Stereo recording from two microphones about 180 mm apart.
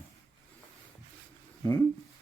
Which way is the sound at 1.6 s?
15° left (ahead or behind).